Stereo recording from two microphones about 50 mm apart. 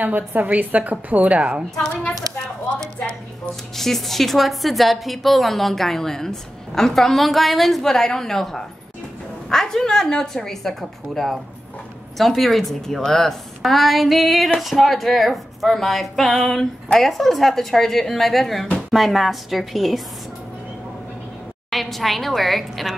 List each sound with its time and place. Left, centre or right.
0.0 s a woman's voice: right
3.7 s a woman's voice: centre
21.6 s a woman's voice: centre